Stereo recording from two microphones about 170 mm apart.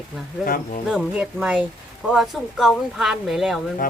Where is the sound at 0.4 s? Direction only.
55° left (ahead or behind).